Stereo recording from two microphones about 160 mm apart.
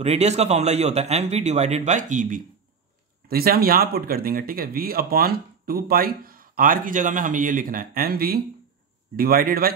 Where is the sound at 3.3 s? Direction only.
70° right (ahead or behind).